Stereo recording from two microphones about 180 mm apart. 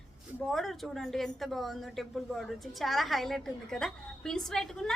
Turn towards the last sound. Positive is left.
turn(degrees=5)  # may be behind; listen again after turning